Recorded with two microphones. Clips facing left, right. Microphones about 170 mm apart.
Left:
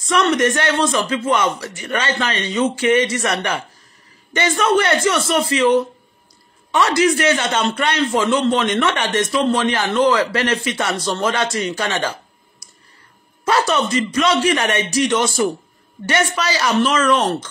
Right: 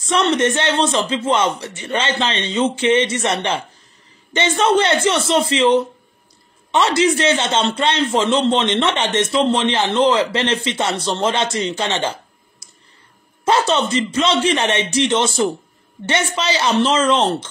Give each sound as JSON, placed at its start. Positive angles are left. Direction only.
{"t": 0.1, "sound": "a man's voice", "side_deg": -25}